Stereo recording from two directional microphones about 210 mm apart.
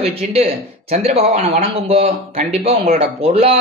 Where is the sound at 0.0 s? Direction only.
30° right (ahead or behind).